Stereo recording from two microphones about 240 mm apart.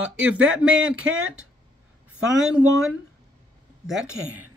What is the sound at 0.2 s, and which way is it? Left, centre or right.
Speech, right.